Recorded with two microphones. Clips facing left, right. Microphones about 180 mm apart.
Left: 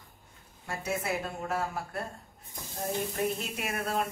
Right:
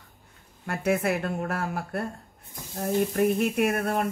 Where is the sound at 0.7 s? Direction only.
60° right (ahead or behind).